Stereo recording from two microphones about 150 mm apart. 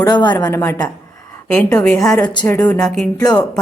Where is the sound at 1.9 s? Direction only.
20° left (ahead or behind).